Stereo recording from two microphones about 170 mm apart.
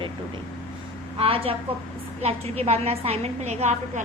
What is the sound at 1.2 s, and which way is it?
A woman's voice, 35° right (ahead or behind).